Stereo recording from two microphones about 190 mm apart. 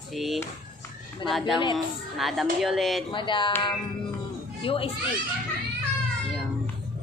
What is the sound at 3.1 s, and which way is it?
Speech, 25° left (ahead or behind).